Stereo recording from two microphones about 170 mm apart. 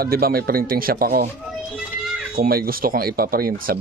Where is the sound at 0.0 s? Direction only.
60° right (ahead or behind).